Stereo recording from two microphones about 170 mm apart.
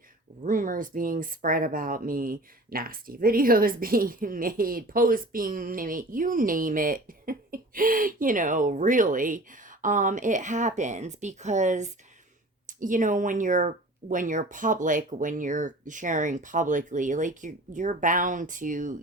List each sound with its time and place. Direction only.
0.4 s speech: 55° right (ahead or behind)